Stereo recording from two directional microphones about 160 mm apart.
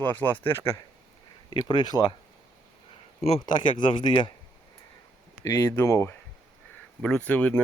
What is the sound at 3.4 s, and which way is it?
Speech, 30° left (ahead or behind).